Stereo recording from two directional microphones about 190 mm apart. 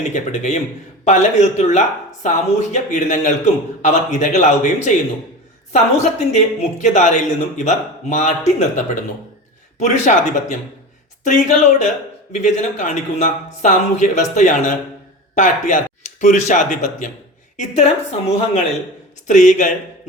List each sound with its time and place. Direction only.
0.1 s speech: 40° left (ahead or behind)